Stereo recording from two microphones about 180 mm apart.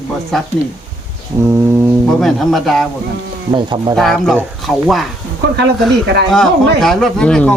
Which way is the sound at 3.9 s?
Centre (ahead or behind).